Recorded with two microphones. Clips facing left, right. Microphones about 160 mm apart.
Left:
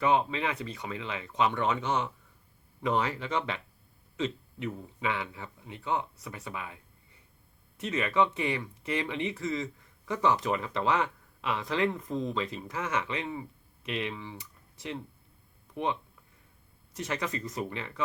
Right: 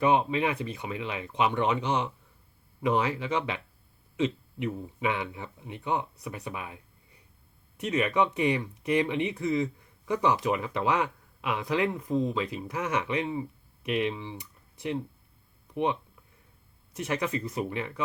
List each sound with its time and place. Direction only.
0.0 s speech: 20° right (ahead or behind)
7.8 s speech: 15° right (ahead or behind)